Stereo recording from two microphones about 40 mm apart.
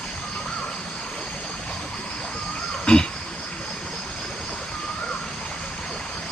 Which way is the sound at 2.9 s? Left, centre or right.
Left.